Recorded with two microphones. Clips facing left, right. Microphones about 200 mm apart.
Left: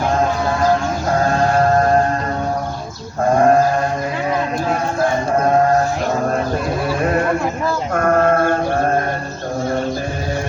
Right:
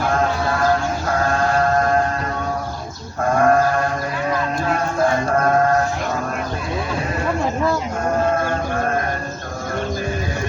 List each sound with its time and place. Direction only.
1.5 s civil defense siren: 35° left (ahead or behind)
3.3 s sheep: 25° left (ahead or behind)
7.9 s sheep: 60° left (ahead or behind)